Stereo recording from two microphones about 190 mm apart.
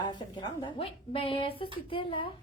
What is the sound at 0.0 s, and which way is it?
A child's voice, 25° left (ahead or behind).